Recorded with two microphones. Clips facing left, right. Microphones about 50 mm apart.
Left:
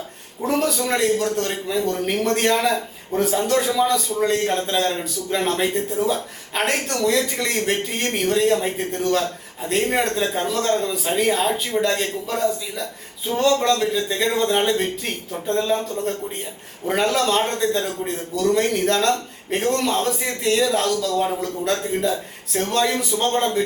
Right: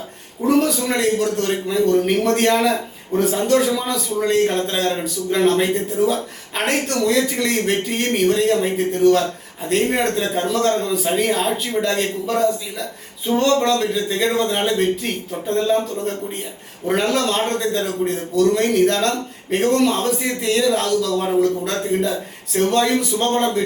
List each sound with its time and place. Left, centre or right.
0.4 s a man's voice: centre